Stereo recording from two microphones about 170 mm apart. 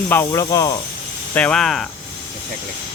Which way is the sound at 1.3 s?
5° left (ahead or behind).